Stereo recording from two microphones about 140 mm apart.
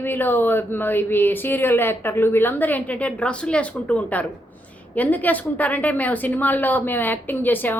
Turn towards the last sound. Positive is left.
turn(degrees=15)  # may be behind; listen again after turning